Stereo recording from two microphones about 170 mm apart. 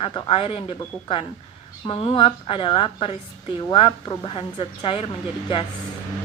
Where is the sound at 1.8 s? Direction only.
30° left (ahead or behind).